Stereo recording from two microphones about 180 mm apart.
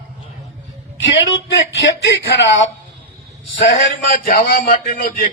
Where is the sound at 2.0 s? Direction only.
85° left.